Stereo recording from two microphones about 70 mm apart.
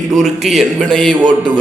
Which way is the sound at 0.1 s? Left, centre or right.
Centre.